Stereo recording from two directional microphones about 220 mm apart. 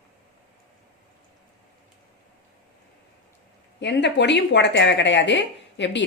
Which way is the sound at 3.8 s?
50° left (ahead or behind).